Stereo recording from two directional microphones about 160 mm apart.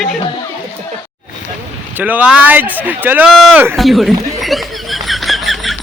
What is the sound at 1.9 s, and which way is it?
Speech, 10° right (ahead or behind).